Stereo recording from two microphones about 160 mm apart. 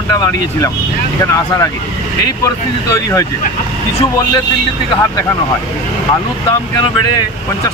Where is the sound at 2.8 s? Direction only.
20° left (ahead or behind).